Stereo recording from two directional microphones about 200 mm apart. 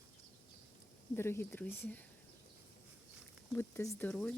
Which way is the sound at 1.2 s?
10° left (ahead or behind).